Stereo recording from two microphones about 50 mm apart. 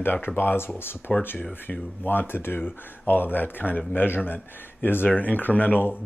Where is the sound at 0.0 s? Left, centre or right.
Left.